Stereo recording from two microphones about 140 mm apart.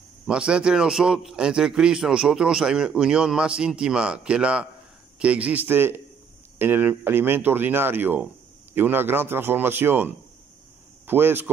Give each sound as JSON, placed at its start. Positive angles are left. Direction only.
{"t": 0.3, "sound": "a man's voice", "side_deg": -5}